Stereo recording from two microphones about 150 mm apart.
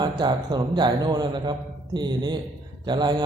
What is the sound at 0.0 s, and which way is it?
Speech, 30° right (ahead or behind).